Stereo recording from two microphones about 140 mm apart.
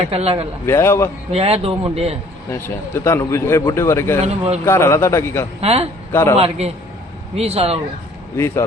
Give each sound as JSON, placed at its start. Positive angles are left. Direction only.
{"t": 0.1, "sound": "a man's voice", "side_deg": -45}
{"t": 0.6, "sound": "speech", "side_deg": 20}
{"t": 1.3, "sound": "a man's voice", "side_deg": -50}
{"t": 2.5, "sound": "speech", "side_deg": 20}
{"t": 4.3, "sound": "a man's voice", "side_deg": -50}
{"t": 4.6, "sound": "speech", "side_deg": 20}
{"t": 5.5, "sound": "a man's voice", "side_deg": -45}
{"t": 6.1, "sound": "a man's voice", "side_deg": 15}
{"t": 7.3, "sound": "a man's voice", "side_deg": -45}
{"t": 8.4, "sound": "speech", "side_deg": 20}